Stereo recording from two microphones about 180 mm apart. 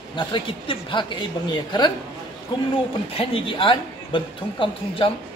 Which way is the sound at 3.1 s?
30° left (ahead or behind).